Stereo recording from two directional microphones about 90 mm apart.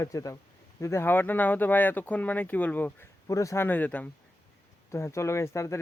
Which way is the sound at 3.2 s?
35° left (ahead or behind).